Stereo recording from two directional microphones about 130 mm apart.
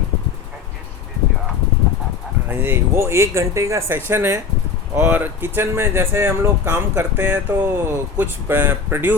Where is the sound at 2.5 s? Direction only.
20° right (ahead or behind).